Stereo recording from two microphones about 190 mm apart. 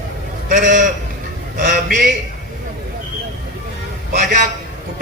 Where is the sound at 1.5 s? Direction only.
45° right (ahead or behind).